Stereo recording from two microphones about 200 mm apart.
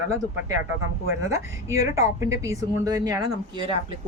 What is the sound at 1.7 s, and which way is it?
A woman's voice, 15° right (ahead or behind).